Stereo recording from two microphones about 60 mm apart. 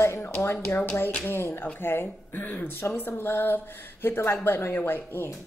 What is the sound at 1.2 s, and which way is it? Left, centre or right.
Speech, left.